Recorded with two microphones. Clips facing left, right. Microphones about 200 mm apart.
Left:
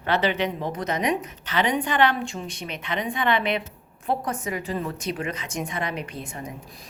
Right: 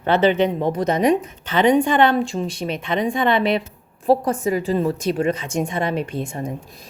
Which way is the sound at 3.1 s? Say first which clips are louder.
Right 4 dB; 45° right (ahead or behind).